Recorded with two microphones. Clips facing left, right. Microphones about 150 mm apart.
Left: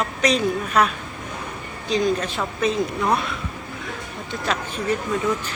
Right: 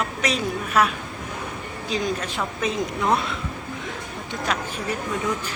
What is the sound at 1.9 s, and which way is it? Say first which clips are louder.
Speech: left 5 dB; 10° right (ahead or behind).